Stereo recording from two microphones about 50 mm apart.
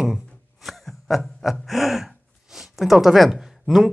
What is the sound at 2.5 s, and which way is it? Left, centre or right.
Speech, centre.